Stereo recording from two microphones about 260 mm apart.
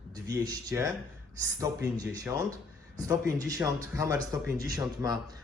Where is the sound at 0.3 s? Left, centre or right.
Centre.